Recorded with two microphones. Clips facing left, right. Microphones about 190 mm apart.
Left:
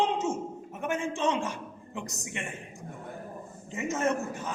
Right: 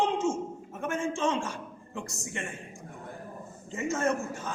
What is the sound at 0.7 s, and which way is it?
A man's voice, 20° left (ahead or behind).